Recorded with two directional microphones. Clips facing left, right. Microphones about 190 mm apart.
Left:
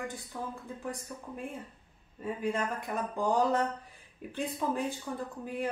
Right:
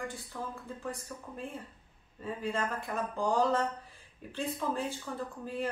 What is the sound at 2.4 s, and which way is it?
Speech, 15° left (ahead or behind).